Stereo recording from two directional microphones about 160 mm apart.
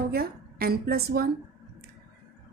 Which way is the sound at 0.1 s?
70° right (ahead or behind).